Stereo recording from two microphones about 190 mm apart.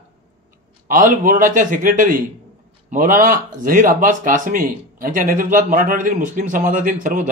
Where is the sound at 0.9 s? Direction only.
45° right (ahead or behind).